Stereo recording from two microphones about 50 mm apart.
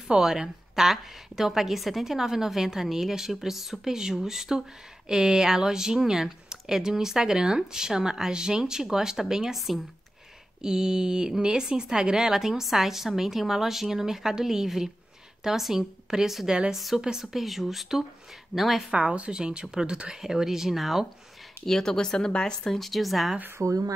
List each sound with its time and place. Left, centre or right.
0.1 s speech: centre
16.4 s a woman's voice: right
16.7 s speech: centre
18.9 s speech: right; by 21.1 s centre
21.6 s speech: centre
22.8 s speech: centre
23.6 s speech: right